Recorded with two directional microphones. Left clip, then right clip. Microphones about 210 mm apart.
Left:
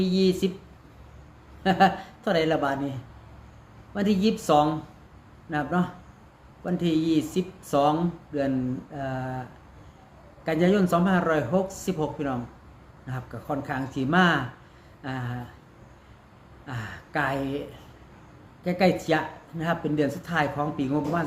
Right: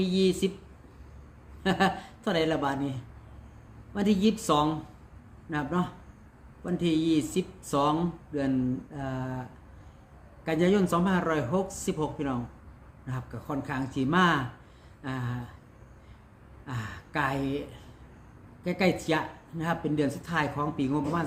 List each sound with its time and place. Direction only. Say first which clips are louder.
0.0 s speech: left 2 dB; 5° right (ahead or behind)
1.6 s speech: left 6 dB; 5° right (ahead or behind)
3.9 s speech: left 2 dB; 5° right (ahead or behind)
10.4 s speech: left 2 dB; 5° right (ahead or behind)
16.6 s speech: left 2 dB; 5° right (ahead or behind)